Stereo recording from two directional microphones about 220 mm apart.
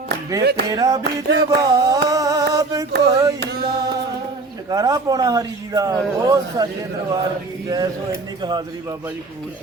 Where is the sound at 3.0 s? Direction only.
15° right (ahead or behind).